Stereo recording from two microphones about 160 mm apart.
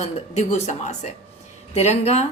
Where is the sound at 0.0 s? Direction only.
45° left (ahead or behind).